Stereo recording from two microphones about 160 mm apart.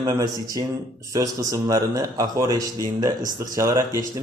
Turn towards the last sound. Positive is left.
turn(degrees=-20)  # may be behind; listen again after turning